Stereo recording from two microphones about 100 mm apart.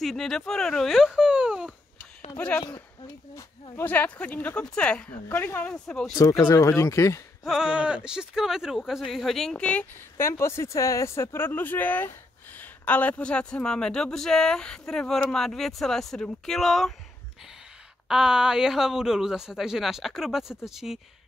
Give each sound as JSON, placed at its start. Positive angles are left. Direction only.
{"t": 0.0, "sound": "speech", "side_deg": 0}
{"t": 2.3, "sound": "speech", "side_deg": 10}
{"t": 3.8, "sound": "speech", "side_deg": 15}
{"t": 5.3, "sound": "speech", "side_deg": 25}
{"t": 5.6, "sound": "speech", "side_deg": 10}
{"t": 6.1, "sound": "speech", "side_deg": 30}
{"t": 7.4, "sound": "speech", "side_deg": -5}
{"t": 10.1, "sound": "speech", "side_deg": 25}
{"t": 18.0, "sound": "speech", "side_deg": -5}